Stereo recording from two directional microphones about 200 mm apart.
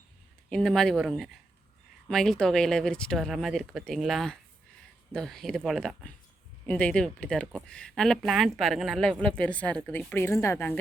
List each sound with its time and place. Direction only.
0.5 s a woman's voice: 5° left (ahead or behind)